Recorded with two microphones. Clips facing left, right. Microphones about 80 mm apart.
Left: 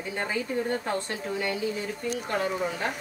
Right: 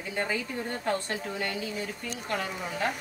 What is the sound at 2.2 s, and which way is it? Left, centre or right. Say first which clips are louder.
Speech: left 2 dB; left.